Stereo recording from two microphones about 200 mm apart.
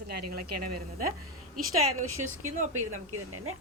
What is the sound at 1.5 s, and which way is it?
Speech, 30° right (ahead or behind).